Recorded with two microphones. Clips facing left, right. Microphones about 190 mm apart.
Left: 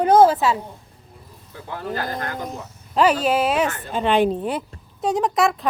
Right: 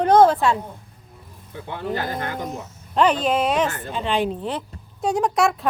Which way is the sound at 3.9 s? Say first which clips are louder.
Left 5 dB; 55° left (ahead or behind).